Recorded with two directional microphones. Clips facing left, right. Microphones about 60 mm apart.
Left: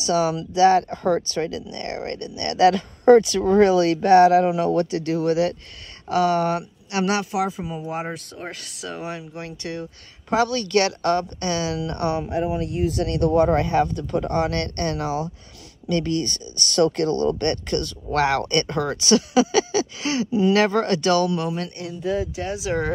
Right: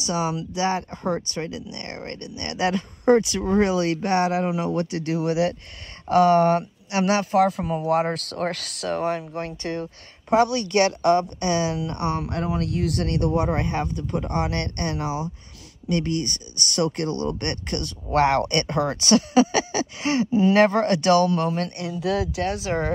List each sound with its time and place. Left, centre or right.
0.0 s speech: right
6.0 s speech: right
7.3 s speech: right
8.8 s speech: right
10.3 s speech: right
12.2 s speech: right
14.2 s speech: right
22.0 s speech: right